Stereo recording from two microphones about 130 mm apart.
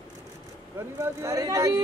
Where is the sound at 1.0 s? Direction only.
25° right (ahead or behind).